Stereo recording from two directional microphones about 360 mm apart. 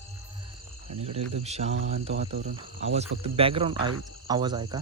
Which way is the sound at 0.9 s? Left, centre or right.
Centre.